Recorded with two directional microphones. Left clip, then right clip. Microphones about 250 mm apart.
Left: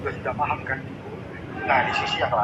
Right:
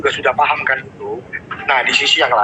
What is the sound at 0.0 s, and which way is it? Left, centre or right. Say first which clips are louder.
Speech: right 12 dB; right.